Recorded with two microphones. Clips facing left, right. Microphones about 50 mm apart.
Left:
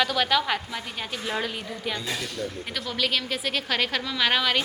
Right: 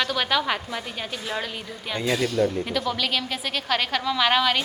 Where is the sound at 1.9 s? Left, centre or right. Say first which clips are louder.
Right 7 dB; right.